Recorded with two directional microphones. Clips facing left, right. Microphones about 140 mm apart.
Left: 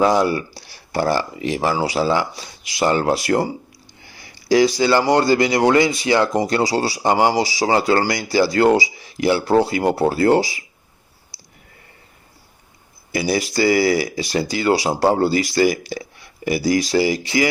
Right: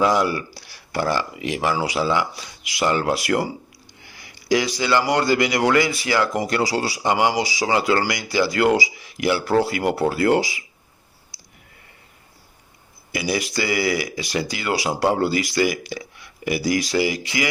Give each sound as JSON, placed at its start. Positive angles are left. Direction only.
{"t": 0.0, "sound": "speech", "side_deg": 25}
{"t": 13.1, "sound": "speech", "side_deg": 35}